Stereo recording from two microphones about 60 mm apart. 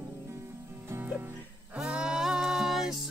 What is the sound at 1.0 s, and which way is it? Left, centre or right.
Music, right.